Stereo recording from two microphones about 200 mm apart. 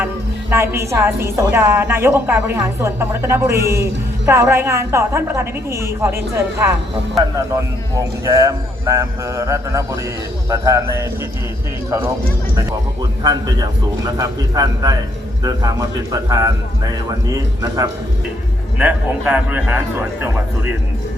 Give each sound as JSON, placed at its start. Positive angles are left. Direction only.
{"t": 0.5, "sound": "a woman's voice", "side_deg": -15}
{"t": 7.9, "sound": "a woman's voice", "side_deg": -15}
{"t": 13.2, "sound": "a woman's voice", "side_deg": -20}